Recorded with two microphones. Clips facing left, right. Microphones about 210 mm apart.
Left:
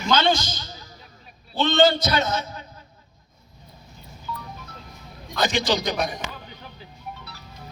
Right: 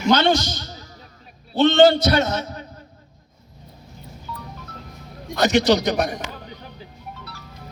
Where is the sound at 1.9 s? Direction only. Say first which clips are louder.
Right 5 dB; 65° right (ahead or behind).